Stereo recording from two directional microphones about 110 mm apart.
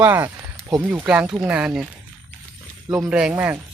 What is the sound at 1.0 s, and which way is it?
Speech, 10° right (ahead or behind).